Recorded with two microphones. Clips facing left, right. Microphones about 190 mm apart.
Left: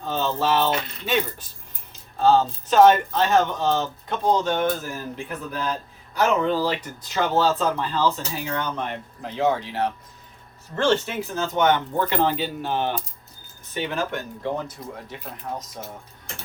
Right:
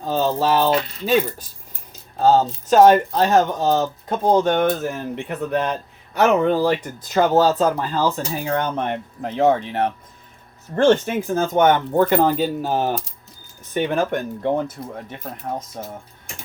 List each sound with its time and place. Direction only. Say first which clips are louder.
0.0 s speech: right 4 dB; 40° right (ahead or behind)
13.7 s speech: right 6 dB; 50° right (ahead or behind)